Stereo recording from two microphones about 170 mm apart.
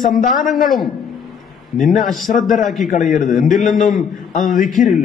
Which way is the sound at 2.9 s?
50° left (ahead or behind).